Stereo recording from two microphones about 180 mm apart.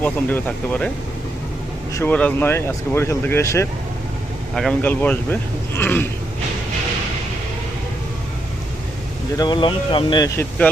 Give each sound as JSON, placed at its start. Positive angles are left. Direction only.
{"t": 0.0, "sound": "speech", "side_deg": 10}
{"t": 1.9, "sound": "speech", "side_deg": 15}
{"t": 9.3, "sound": "speech", "side_deg": 20}